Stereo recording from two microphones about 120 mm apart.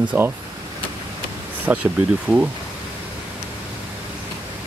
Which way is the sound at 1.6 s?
10° right (ahead or behind).